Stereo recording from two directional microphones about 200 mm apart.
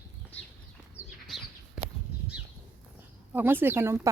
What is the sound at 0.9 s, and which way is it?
Bird, centre (ahead or behind).